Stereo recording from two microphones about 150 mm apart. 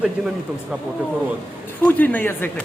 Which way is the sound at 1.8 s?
10° left (ahead or behind).